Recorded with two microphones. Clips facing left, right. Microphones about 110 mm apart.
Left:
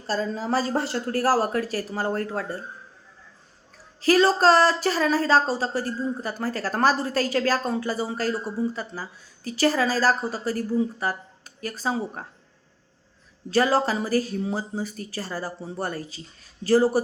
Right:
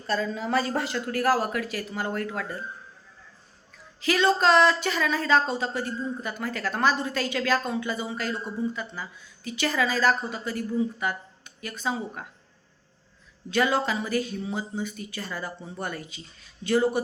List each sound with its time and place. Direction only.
0.1 s speech: 35° left (ahead or behind)
4.0 s speech: 35° left (ahead or behind)
13.5 s speech: 35° left (ahead or behind)